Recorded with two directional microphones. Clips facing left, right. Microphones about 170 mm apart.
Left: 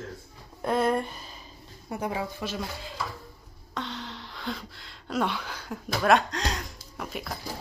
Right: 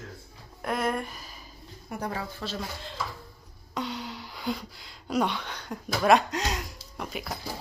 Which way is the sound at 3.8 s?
5° right (ahead or behind).